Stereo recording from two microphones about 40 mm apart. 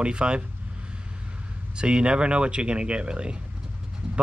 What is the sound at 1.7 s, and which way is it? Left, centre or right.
Speech, right.